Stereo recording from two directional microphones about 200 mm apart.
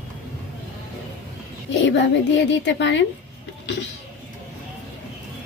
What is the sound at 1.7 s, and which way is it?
A child's voice, 65° left (ahead or behind).